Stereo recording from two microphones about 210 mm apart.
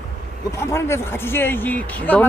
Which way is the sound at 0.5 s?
10° left (ahead or behind).